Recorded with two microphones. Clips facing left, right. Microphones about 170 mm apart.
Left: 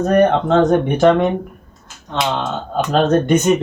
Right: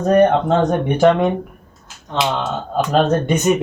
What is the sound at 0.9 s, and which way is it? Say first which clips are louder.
Speech: right 2 dB; 10° right (ahead or behind).